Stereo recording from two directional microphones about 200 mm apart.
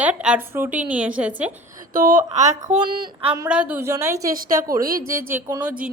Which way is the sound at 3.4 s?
5° right (ahead or behind).